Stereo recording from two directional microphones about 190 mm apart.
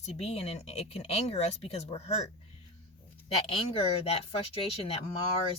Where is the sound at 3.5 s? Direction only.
30° left (ahead or behind).